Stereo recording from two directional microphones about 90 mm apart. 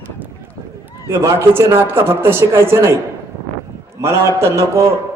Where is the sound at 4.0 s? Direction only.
30° right (ahead or behind).